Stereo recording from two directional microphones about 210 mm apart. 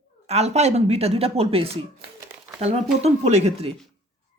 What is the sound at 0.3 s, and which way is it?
A woman's voice, 30° right (ahead or behind).